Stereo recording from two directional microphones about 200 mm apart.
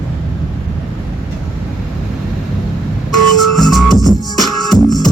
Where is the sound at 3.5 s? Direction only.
Centre (ahead or behind).